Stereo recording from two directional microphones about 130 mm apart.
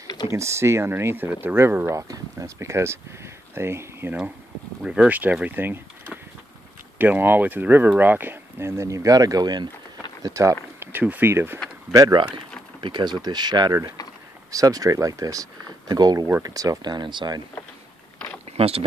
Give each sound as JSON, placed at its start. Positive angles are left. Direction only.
{"t": 0.3, "sound": "speech", "side_deg": -20}
{"t": 11.9, "sound": "speech", "side_deg": -30}
{"t": 18.6, "sound": "speech", "side_deg": -50}